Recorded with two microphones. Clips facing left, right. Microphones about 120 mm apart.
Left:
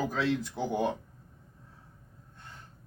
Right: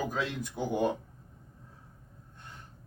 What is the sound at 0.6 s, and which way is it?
Speech, 10° right (ahead or behind).